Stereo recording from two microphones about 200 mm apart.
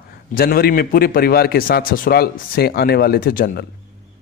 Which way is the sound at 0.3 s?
45° left (ahead or behind).